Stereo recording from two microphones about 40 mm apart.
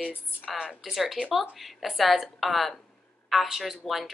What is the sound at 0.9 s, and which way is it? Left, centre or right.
A woman's voice, centre.